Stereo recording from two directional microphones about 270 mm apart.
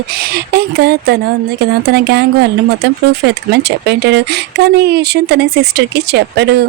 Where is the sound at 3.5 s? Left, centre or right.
Right.